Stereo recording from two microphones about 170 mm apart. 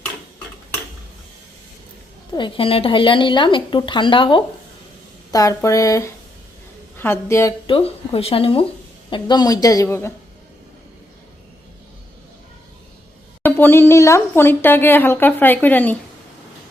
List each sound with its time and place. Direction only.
2.3 s speech: 30° left (ahead or behind)
7.7 s speech: 35° left (ahead or behind); by 10.1 s 15° left (ahead or behind)
13.4 s speech: 10° left (ahead or behind)